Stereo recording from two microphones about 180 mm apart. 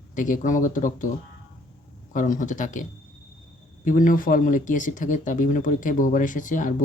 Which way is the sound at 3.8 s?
45° left (ahead or behind).